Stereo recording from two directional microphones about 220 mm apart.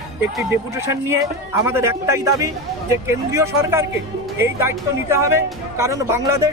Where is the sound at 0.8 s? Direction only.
15° right (ahead or behind).